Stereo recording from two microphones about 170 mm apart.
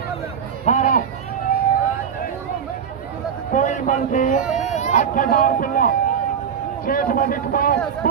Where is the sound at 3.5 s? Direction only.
45° left (ahead or behind).